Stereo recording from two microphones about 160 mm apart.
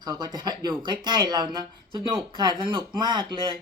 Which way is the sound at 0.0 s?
25° right (ahead or behind).